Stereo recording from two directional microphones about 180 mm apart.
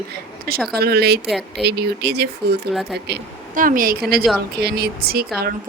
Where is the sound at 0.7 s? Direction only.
60° right (ahead or behind).